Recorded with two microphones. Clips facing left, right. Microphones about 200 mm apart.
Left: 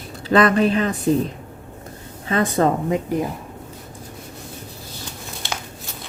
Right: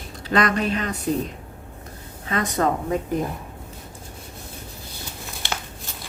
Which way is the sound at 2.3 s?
25° left (ahead or behind).